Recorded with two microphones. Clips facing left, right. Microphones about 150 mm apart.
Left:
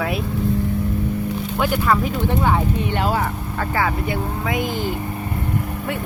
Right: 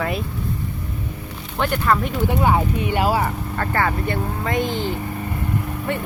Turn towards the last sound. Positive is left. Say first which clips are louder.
# even
turn(degrees=10)  # may be behind; listen again after turning